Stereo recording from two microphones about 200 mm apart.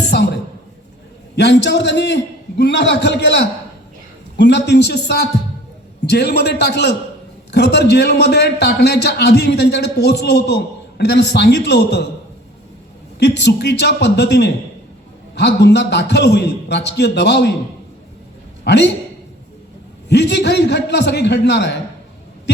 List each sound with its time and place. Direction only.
0.1 s a sound: 55° left (ahead or behind)
1.4 s a man's voice: 60° left (ahead or behind)
13.1 s a man's voice: 60° left (ahead or behind)
18.6 s a man's voice: 60° left (ahead or behind)
20.1 s a man's voice: 60° left (ahead or behind)